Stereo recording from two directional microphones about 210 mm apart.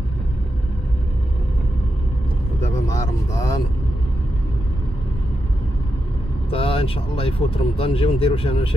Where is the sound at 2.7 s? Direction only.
15° left (ahead or behind).